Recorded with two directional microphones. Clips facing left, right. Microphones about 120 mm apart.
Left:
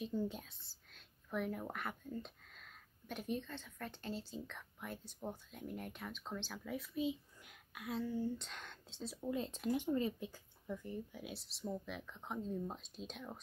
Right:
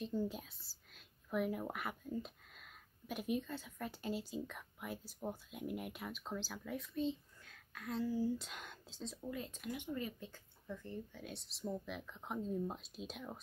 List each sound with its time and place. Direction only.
0.0 s speech: centre (ahead or behind)
7.9 s speech: 5° right (ahead or behind)
9.2 s speech: 25° left (ahead or behind)
10.2 s speech: 15° left (ahead or behind); by 13.4 s 5° right (ahead or behind)